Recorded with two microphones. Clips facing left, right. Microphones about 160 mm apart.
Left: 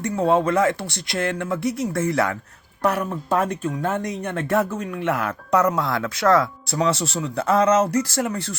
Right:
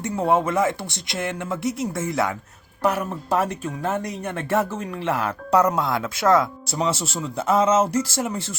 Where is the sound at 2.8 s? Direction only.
25° right (ahead or behind).